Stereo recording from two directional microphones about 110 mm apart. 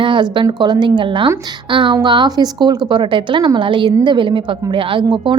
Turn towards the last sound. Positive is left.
turn(degrees=-45)  # may be behind; listen again after turning